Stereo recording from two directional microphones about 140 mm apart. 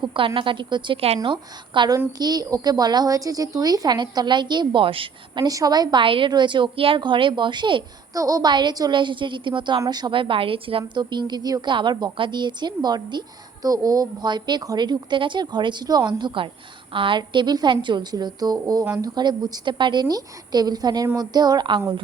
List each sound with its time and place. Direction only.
0.0 s a woman's voice: 35° right (ahead or behind)